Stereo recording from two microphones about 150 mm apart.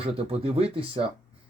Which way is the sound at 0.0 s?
40° right (ahead or behind).